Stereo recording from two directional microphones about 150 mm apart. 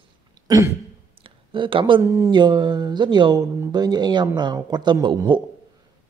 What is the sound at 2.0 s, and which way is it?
A man's voice, 20° right (ahead or behind).